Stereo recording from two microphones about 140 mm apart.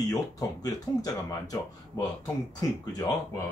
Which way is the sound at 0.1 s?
25° left (ahead or behind).